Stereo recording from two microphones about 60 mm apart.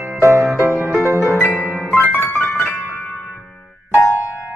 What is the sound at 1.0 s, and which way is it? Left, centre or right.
Harp, right.